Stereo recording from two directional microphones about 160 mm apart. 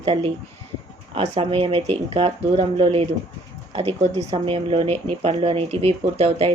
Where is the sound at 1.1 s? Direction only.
35° right (ahead or behind).